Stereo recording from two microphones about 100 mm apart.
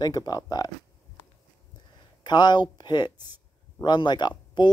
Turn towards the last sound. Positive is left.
turn(degrees=45)  # may be behind; listen again after turning